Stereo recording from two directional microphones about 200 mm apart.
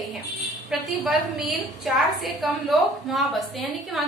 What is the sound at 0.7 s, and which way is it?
A woman's voice, centre (ahead or behind).